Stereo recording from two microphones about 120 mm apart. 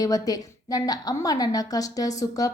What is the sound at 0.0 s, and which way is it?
A woman's voice, 30° left (ahead or behind).